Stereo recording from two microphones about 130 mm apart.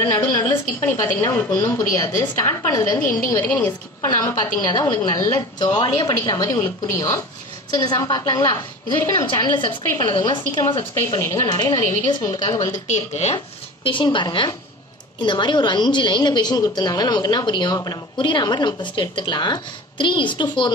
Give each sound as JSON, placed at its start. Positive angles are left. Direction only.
{"t": 0.0, "sound": "a woman's voice", "side_deg": 25}
{"t": 4.2, "sound": "a woman's voice", "side_deg": 30}
{"t": 11.1, "sound": "a woman's voice", "side_deg": 20}
{"t": 12.8, "sound": "speech", "side_deg": 65}
{"t": 13.8, "sound": "a woman's voice", "side_deg": 40}